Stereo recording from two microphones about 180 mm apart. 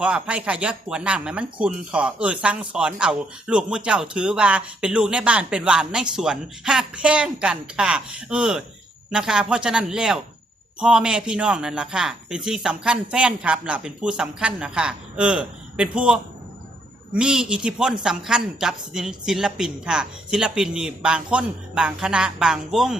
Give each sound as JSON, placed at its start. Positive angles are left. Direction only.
{"t": 0.0, "sound": "speech", "side_deg": -5}